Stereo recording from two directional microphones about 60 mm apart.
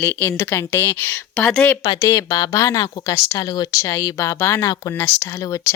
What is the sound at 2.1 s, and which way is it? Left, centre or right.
Speech, left.